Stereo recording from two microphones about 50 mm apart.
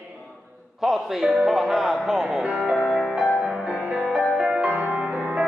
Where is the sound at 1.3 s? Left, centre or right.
Centre.